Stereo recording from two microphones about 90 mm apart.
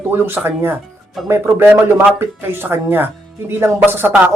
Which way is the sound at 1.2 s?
Centre (ahead or behind).